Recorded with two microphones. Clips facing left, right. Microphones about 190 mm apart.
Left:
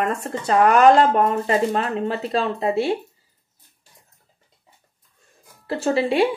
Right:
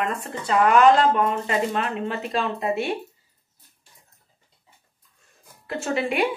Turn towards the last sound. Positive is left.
turn(degrees=30)  # may be behind; listen again after turning